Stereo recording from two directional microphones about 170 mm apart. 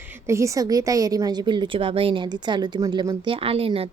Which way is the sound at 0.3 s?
15° right (ahead or behind).